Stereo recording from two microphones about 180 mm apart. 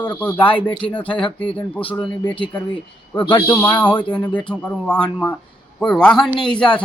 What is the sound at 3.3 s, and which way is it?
Speech, 15° left (ahead or behind).